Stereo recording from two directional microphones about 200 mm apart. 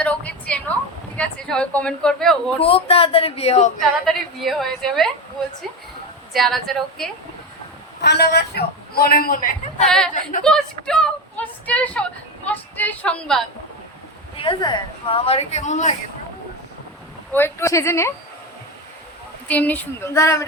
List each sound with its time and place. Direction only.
0.0 s a sound: 5° left (ahead or behind)
1.1 s a woman's voice: 5° left (ahead or behind)
2.6 s speech: 30° left (ahead or behind)
3.8 s a woman's voice: centre (ahead or behind)
6.3 s a woman's voice: centre (ahead or behind)
8.0 s a man's voice: 55° left (ahead or behind)
10.4 s a woman's voice: 5° left (ahead or behind)
14.4 s a woman's voice: 25° left (ahead or behind)
17.3 s a woman's voice: 10° left (ahead or behind)
19.5 s a woman's voice: 10° left (ahead or behind)